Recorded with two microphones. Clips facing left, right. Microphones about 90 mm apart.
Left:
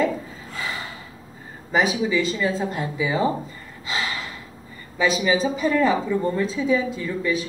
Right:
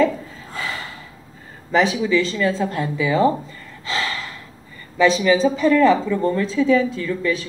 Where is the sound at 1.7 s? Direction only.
15° left (ahead or behind).